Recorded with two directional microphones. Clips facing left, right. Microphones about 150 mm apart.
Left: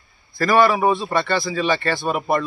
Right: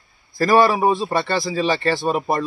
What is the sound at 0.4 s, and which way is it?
A man's voice, 35° right (ahead or behind).